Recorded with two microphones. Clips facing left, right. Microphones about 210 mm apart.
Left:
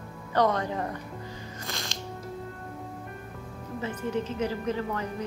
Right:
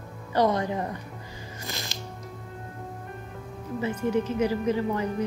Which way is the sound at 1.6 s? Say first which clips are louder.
Right 1 dB; 5° right (ahead or behind).